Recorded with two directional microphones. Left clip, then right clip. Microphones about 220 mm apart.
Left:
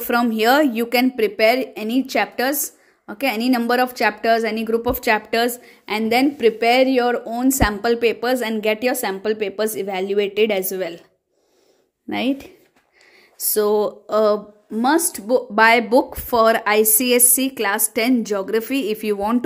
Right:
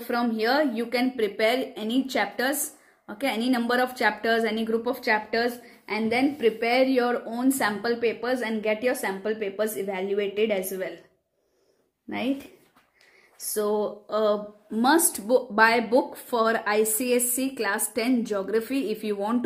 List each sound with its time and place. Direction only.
0.0 s a woman's voice: 50° left (ahead or behind)
12.1 s a woman's voice: 50° left (ahead or behind)
13.5 s a woman's voice: 45° left (ahead or behind)
14.7 s speech: 25° left (ahead or behind)